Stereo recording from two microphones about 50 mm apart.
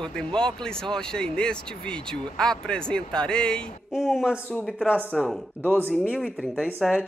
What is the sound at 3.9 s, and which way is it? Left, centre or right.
Speech, centre.